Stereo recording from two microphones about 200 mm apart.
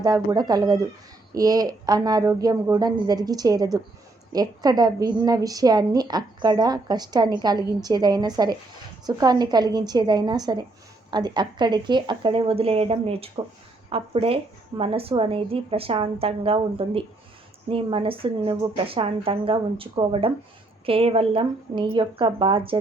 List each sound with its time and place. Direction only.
0.0 s a woman's voice: 20° right (ahead or behind)